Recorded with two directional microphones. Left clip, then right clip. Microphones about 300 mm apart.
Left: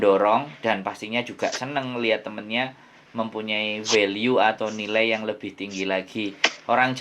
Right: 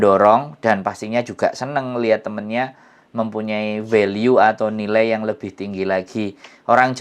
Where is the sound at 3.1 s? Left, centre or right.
Right.